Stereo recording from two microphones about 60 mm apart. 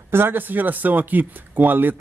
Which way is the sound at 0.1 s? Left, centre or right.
Right.